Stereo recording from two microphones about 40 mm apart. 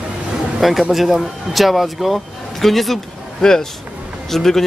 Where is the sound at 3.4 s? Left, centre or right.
Centre.